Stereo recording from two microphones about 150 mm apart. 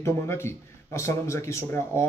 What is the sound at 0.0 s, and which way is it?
A man's voice, 15° left (ahead or behind).